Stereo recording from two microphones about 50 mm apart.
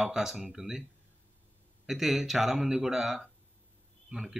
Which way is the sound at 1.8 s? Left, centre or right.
Centre.